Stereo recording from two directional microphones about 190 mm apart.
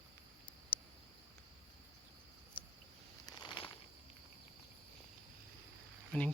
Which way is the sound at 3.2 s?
25° left (ahead or behind).